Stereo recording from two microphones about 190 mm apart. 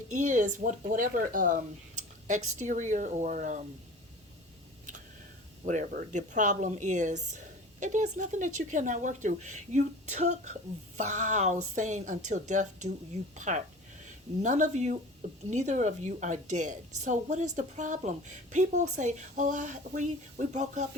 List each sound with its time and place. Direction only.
0.2 s speech: 40° right (ahead or behind)
5.6 s speech: 45° right (ahead or behind)